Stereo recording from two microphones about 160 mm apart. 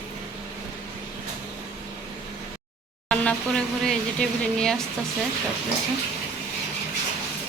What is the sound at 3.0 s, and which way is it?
Speech, 5° left (ahead or behind).